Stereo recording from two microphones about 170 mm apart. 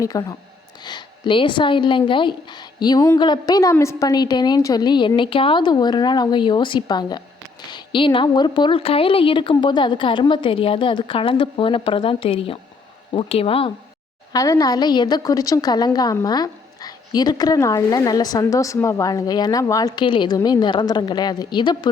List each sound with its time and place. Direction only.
0.0 s a woman's voice: 20° left (ahead or behind)
14.3 s a woman's voice: 20° left (ahead or behind)